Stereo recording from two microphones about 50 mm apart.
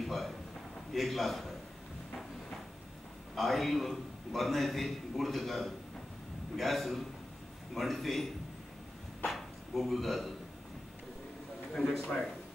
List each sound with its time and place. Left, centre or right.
0.0 s a sound: centre
0.9 s a man's voice: centre
3.3 s a man's voice: centre
11.7 s speech: centre